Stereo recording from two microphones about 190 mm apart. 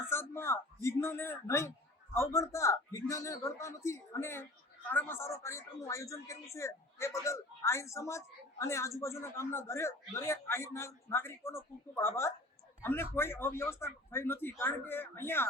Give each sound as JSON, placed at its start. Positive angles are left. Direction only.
{"t": 0.1, "sound": "speech", "side_deg": 15}